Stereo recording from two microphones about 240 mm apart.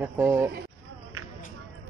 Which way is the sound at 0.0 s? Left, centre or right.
Centre.